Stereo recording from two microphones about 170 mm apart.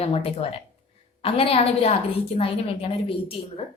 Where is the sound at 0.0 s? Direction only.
35° left (ahead or behind).